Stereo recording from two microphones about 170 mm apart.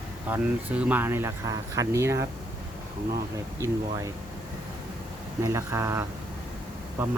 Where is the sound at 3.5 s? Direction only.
15° right (ahead or behind).